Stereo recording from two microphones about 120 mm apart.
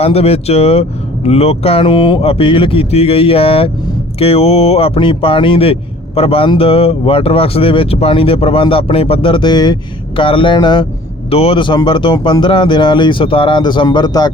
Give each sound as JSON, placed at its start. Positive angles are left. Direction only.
{"t": 0.0, "sound": "speech", "side_deg": 55}
{"t": 2.2, "sound": "speech", "side_deg": 50}
{"t": 10.2, "sound": "speech", "side_deg": 45}
{"t": 11.3, "sound": "speech", "side_deg": 50}